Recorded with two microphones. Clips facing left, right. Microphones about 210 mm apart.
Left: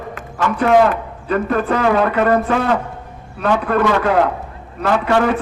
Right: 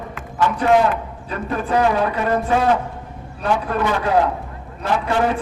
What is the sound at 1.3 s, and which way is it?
A man's voice, 70° left (ahead or behind).